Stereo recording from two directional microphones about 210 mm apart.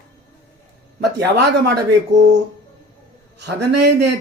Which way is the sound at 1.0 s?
55° right (ahead or behind).